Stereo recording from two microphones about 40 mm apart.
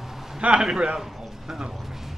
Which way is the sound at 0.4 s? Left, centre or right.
Right.